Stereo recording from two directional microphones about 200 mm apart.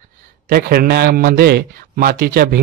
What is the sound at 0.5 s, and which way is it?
A man's voice, 50° right (ahead or behind).